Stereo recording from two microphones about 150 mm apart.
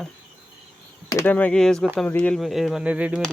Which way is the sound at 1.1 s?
20° left (ahead or behind).